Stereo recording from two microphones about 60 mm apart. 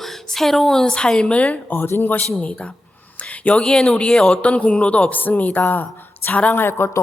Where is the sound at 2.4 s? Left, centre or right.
Left.